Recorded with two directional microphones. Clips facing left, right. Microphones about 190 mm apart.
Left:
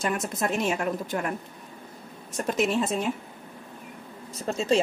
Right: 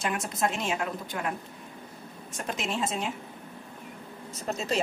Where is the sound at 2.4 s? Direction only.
45° left (ahead or behind).